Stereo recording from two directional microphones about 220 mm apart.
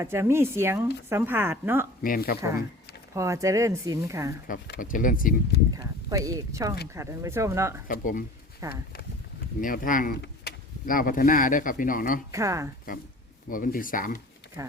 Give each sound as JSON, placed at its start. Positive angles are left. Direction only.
{"t": 0.0, "sound": "a woman's voice", "side_deg": -10}
{"t": 2.0, "sound": "speech", "side_deg": 40}
{"t": 2.4, "sound": "a woman's voice", "side_deg": -15}
{"t": 4.4, "sound": "speech", "side_deg": 40}
{"t": 5.7, "sound": "a woman's voice", "side_deg": -15}
{"t": 7.9, "sound": "speech", "side_deg": 40}
{"t": 8.6, "sound": "a woman's voice", "side_deg": -15}
{"t": 9.6, "sound": "speech", "side_deg": 40}
{"t": 12.3, "sound": "a woman's voice", "side_deg": -15}
{"t": 13.5, "sound": "speech", "side_deg": 40}
{"t": 14.6, "sound": "speech", "side_deg": -15}